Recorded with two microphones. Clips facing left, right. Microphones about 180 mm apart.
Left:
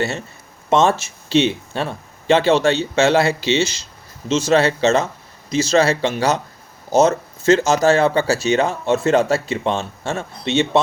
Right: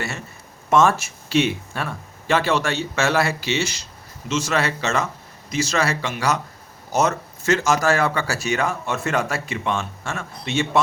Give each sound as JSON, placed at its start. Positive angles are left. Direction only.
{"t": 0.7, "sound": "speech", "side_deg": 25}